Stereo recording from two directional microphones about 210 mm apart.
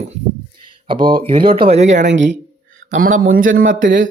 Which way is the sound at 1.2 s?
25° right (ahead or behind).